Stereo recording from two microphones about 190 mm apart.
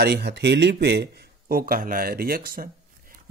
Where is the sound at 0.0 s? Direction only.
60° right (ahead or behind).